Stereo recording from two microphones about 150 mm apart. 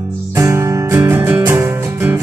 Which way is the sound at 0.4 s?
20° right (ahead or behind).